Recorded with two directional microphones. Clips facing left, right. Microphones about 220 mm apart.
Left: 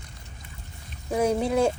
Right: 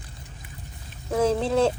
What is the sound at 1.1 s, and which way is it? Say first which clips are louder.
Speech: right 1 dB; 15° left (ahead or behind).